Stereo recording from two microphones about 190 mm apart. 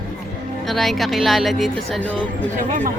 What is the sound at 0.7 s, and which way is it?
A woman's voice, centre (ahead or behind).